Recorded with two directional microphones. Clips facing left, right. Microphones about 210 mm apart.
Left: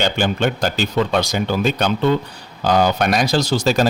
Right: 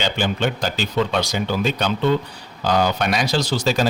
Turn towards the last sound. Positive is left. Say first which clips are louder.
# left 3 dB
turn(degrees=45)  # may be behind; listen again after turning